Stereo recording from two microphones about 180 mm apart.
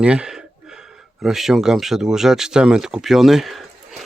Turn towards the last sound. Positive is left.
turn(degrees=0)  # may be behind; listen again after turning